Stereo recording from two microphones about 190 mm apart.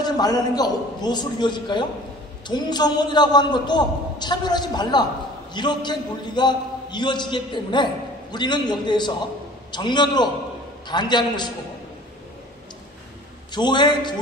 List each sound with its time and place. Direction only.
0.0 s a man's voice: 20° left (ahead or behind)
13.5 s a man's voice: 25° left (ahead or behind)